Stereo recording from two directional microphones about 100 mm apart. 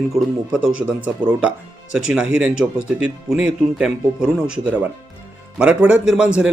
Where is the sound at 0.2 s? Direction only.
5° right (ahead or behind).